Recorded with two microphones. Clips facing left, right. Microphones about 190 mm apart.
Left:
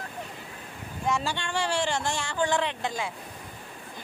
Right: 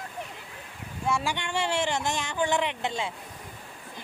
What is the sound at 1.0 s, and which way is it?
Speech, 10° right (ahead or behind).